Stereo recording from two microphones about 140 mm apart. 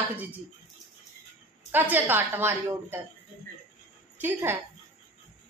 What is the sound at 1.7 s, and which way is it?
A woman's voice, 15° right (ahead or behind).